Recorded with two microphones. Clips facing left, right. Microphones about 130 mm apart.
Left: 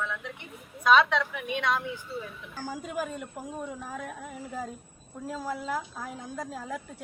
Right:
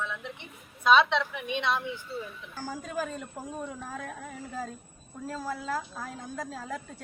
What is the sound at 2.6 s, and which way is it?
A woman's voice, 15° left (ahead or behind).